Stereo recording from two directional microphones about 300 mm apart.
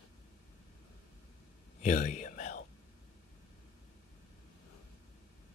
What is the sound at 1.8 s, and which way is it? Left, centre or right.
Whispering, left.